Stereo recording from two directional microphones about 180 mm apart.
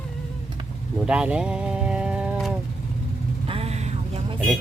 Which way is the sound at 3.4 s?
35° right (ahead or behind).